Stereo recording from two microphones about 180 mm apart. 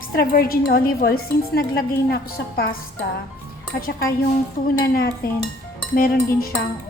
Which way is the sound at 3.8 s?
55° left (ahead or behind).